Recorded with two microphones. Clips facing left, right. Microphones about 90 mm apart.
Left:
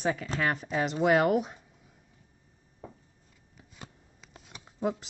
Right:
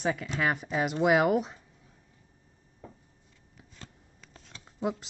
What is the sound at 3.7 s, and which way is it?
Shuffling cards, 10° left (ahead or behind).